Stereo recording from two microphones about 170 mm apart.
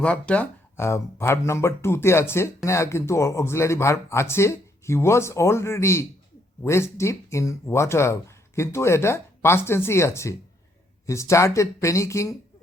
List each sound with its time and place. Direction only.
0.0 s speech: 5° left (ahead or behind)